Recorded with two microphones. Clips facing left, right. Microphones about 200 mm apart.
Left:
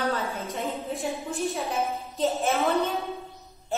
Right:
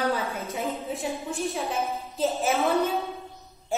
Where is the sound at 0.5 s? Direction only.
Centre (ahead or behind).